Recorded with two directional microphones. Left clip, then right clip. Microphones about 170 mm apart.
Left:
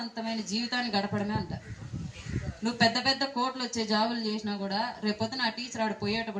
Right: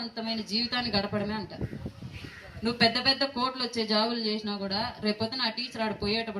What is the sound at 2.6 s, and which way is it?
A woman's voice, 25° left (ahead or behind).